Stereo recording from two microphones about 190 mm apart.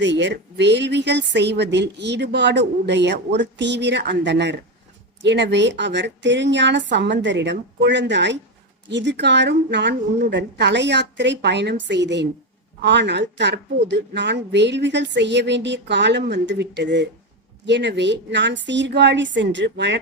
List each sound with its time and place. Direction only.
0.0 s a woman's voice: 65° right (ahead or behind)